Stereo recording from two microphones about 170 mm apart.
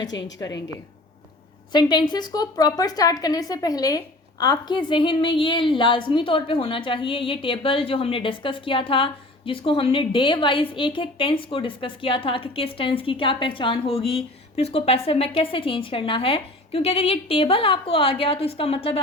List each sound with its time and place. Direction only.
0.3 s a woman's voice: 20° left (ahead or behind)
1.7 s a woman's voice: 25° left (ahead or behind)